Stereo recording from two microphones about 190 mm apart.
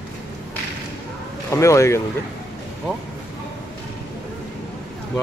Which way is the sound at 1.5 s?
15° left (ahead or behind).